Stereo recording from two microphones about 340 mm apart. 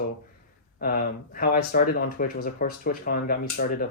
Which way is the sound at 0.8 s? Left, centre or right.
Left.